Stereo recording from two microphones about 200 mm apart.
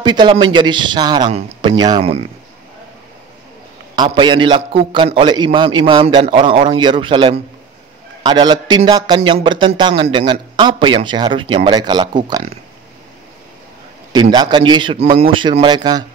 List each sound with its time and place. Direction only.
0.0 s a man's voice: 20° right (ahead or behind)
3.9 s a man's voice: 20° right (ahead or behind)
14.1 s a man's voice: 20° right (ahead or behind)